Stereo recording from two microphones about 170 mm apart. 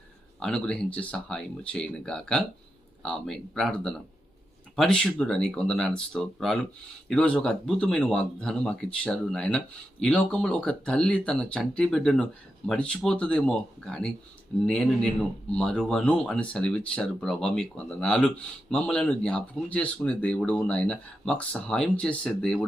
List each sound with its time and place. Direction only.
0.3 s speech: 5° left (ahead or behind)